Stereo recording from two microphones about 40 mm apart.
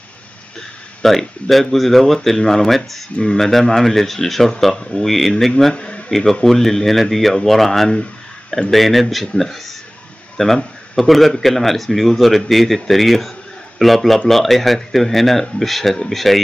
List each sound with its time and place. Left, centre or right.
1.0 s speech: centre
5.8 s speech: left
6.0 s speech: centre